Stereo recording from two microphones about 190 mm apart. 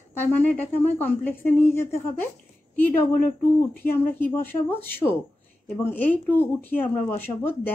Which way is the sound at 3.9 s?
10° left (ahead or behind).